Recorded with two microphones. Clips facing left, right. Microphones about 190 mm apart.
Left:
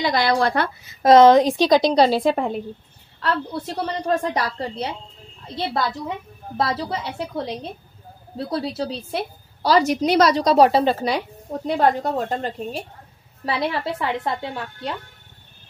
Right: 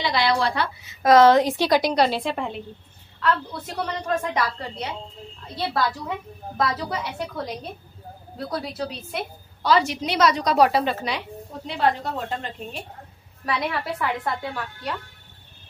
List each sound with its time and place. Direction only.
0.0 s speech: 45° left (ahead or behind)
1.0 s a woman's voice: 20° left (ahead or behind)
1.9 s a woman's voice: 35° left (ahead or behind)
3.2 s a woman's voice: 30° left (ahead or behind)
6.5 s a woman's voice: 30° left (ahead or behind)
13.5 s a woman's voice: 30° left (ahead or behind)